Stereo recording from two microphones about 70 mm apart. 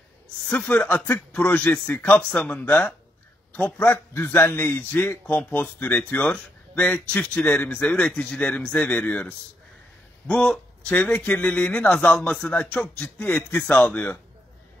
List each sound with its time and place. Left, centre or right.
0.5 s a man's voice: left